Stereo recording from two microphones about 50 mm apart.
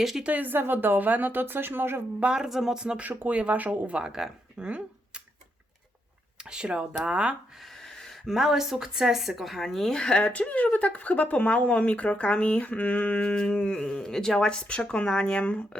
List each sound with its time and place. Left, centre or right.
0.3 s a woman's voice: right
2.2 s speech: centre
3.2 s speech: right
3.9 s speech: centre
6.4 s speech: centre
7.6 s a sound: centre
8.3 s speech: centre
10.2 s speech: left